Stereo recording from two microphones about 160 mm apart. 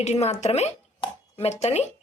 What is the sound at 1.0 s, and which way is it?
Dishes, 40° left (ahead or behind).